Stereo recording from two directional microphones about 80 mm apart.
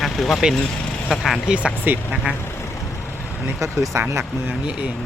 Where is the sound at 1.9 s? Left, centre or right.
Right.